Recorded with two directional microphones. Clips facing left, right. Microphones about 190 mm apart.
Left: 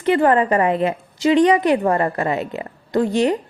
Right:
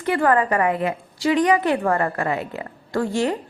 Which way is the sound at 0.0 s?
20° left (ahead or behind).